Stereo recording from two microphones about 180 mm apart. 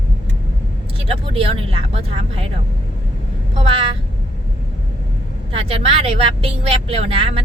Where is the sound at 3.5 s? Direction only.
30° right (ahead or behind).